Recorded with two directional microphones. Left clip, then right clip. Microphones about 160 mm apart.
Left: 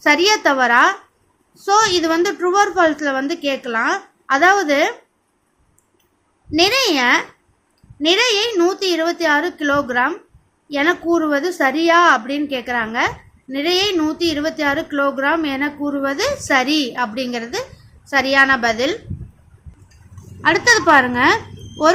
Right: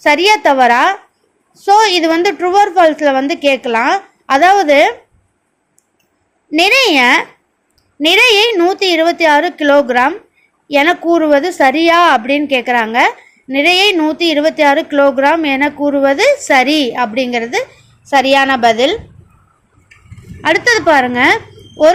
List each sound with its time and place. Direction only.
0.0 s a woman's voice: 25° right (ahead or behind)
6.6 s a woman's voice: 30° right (ahead or behind)
20.4 s a woman's voice: 20° right (ahead or behind)